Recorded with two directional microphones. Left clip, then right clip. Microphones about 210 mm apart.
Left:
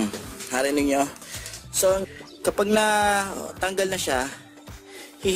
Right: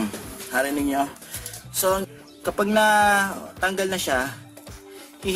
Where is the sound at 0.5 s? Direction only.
20° left (ahead or behind).